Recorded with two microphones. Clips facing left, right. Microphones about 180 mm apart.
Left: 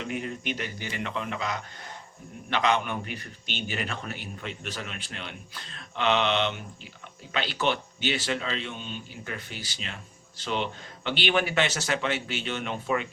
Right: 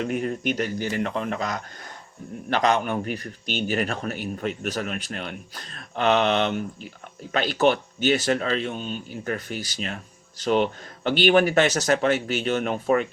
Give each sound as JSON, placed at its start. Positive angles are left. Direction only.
{"t": 0.0, "sound": "a man's voice", "side_deg": -45}